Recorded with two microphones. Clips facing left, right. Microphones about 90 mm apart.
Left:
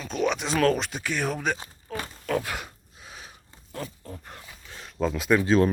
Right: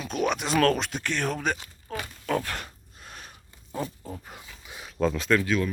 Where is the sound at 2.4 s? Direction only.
5° left (ahead or behind).